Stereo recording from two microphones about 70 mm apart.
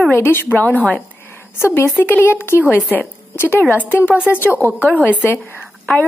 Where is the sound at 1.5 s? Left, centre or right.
Left.